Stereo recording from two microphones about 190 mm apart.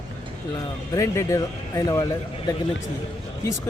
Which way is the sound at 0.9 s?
15° left (ahead or behind).